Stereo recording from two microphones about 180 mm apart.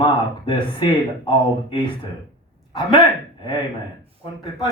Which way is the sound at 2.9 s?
25° left (ahead or behind).